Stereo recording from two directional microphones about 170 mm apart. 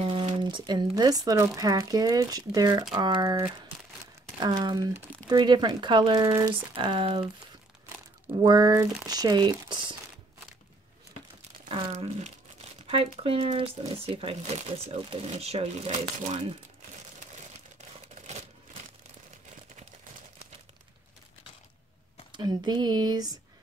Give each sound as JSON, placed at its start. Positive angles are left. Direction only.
{"t": 0.0, "sound": "speech", "side_deg": -30}
{"t": 8.3, "sound": "speech", "side_deg": -25}
{"t": 11.7, "sound": "speech", "side_deg": -35}
{"t": 17.7, "sound": "crumpling", "side_deg": -40}
{"t": 22.3, "sound": "speech", "side_deg": -25}